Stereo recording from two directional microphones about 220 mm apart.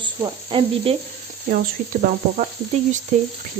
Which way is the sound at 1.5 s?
35° right (ahead or behind).